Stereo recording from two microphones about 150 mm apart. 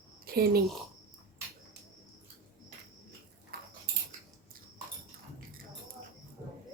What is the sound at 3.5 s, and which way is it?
Keys jangling, 90° right.